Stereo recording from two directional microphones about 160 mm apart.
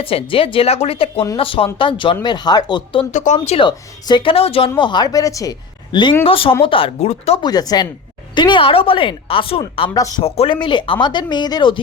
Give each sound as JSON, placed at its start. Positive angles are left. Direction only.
{"t": 0.0, "sound": "a woman's voice", "side_deg": 35}
{"t": 3.1, "sound": "speech", "side_deg": 50}
{"t": 3.6, "sound": "a woman's voice", "side_deg": 25}
{"t": 7.4, "sound": "a woman's voice", "side_deg": 25}